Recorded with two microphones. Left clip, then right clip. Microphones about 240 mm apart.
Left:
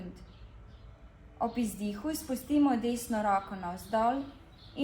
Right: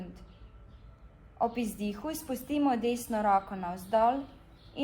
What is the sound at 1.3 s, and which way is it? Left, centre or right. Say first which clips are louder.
A woman's voice: right 2 dB; right.